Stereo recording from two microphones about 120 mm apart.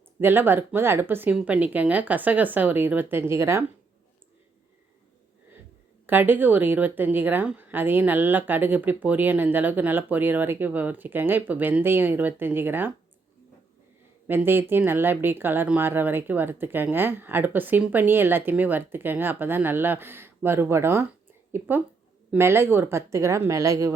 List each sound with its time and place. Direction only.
0.2 s a woman's voice: 15° right (ahead or behind)
6.1 s a woman's voice: 15° right (ahead or behind)
14.3 s a woman's voice: 20° right (ahead or behind)